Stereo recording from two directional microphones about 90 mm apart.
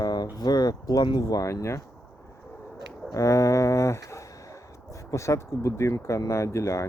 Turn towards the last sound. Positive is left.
turn(degrees=35)  # may be behind; listen again after turning